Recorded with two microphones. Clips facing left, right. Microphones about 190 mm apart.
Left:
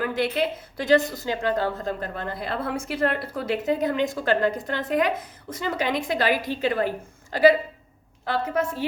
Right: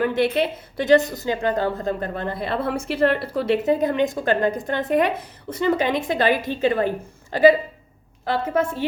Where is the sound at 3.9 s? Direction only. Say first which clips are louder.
Right 2 dB; 50° right (ahead or behind).